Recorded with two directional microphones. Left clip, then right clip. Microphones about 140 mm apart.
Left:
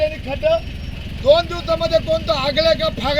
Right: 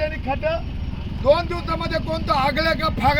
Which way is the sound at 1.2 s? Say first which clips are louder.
Left 4 dB; 25° right (ahead or behind).